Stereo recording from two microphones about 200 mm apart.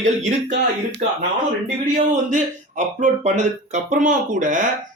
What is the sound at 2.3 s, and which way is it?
Speech, 35° right (ahead or behind).